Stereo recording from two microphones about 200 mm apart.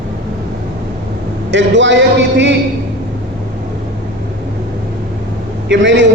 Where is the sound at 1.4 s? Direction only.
65° right (ahead or behind).